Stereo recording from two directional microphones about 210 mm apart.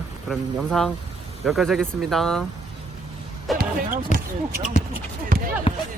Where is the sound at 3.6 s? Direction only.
45° right (ahead or behind).